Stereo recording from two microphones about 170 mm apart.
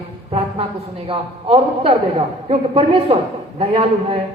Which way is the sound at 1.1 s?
35° right (ahead or behind).